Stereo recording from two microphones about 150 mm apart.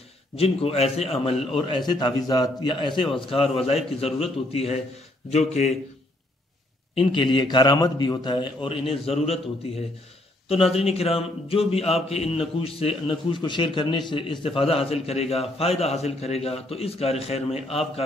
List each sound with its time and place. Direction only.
0.4 s a man's voice: 40° left (ahead or behind)
7.0 s a man's voice: 35° left (ahead or behind)
10.5 s a man's voice: 40° left (ahead or behind)